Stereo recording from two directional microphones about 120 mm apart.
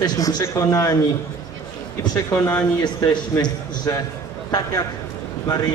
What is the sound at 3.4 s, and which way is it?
A man's voice, 30° left (ahead or behind).